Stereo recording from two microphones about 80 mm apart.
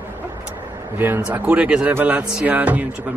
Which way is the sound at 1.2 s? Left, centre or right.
Centre.